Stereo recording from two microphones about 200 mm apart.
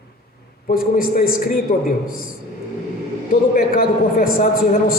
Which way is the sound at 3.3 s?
45° left (ahead or behind).